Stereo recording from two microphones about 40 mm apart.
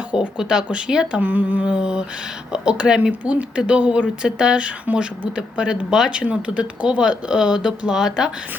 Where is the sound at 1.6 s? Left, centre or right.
Right.